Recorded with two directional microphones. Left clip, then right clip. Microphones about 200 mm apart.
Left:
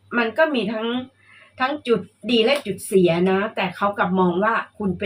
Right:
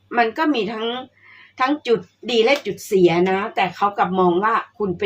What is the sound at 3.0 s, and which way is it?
Speech, 45° right (ahead or behind).